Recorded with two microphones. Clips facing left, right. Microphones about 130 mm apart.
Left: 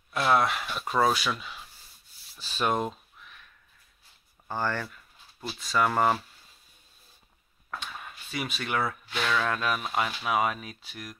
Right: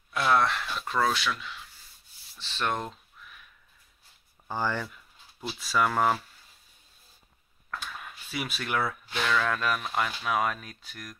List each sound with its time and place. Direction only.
0.1 s speech: 5° left (ahead or behind); by 1.7 s 20° left (ahead or behind)
2.3 s speech: 10° left (ahead or behind)
3.2 s crow: centre (ahead or behind)
4.5 s speech: 10° right (ahead or behind)
5.9 s speech: 5° left (ahead or behind)
7.8 s speech: centre (ahead or behind)